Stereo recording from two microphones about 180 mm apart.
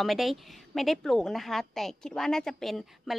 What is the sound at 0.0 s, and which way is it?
Speech, centre (ahead or behind).